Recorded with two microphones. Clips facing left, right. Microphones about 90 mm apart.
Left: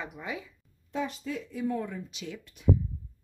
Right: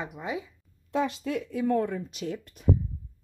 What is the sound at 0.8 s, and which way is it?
Speech, 90° right.